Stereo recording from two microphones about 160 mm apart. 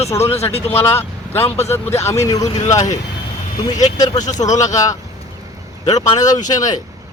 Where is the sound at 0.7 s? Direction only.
15° left (ahead or behind).